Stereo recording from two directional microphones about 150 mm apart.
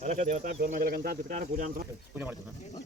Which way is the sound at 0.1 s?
55° right (ahead or behind).